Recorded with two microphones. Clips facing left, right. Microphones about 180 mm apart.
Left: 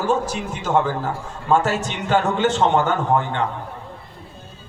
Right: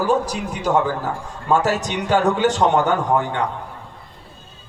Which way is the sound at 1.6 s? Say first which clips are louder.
Right 1 dB; 40° right (ahead or behind).